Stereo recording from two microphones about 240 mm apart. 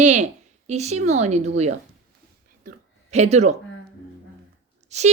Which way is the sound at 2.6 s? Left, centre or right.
Right.